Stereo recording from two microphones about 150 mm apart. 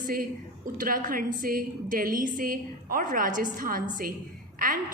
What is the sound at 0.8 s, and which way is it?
A woman's voice, 65° right (ahead or behind).